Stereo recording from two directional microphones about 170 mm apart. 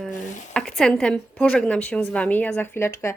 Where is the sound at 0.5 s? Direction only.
5° left (ahead or behind).